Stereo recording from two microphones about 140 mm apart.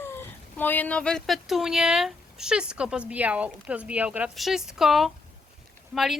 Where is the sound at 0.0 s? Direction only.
15° left (ahead or behind).